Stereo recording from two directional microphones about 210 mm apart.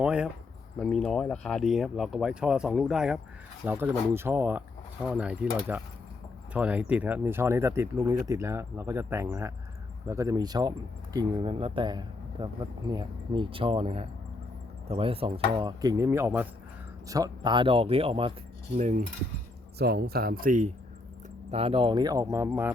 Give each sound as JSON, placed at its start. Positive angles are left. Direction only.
{"t": 0.0, "sound": "speech", "side_deg": -5}
{"t": 18.8, "sound": "keys jangling", "side_deg": -35}
{"t": 19.8, "sound": "speech", "side_deg": -50}
{"t": 21.5, "sound": "speech", "side_deg": -25}